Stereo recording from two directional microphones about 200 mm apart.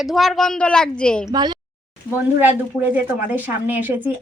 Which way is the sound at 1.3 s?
20° right (ahead or behind).